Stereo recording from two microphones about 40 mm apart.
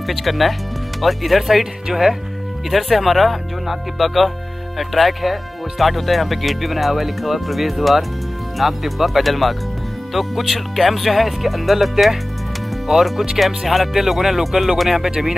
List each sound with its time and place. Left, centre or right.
0.0 s speech: centre
2.7 s speech: centre